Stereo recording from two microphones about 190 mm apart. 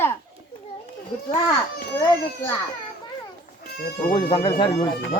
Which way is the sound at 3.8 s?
50° left (ahead or behind).